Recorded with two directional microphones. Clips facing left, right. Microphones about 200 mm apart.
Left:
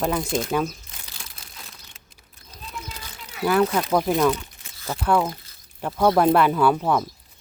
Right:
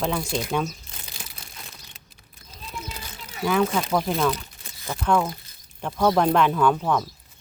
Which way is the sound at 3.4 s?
5° left (ahead or behind).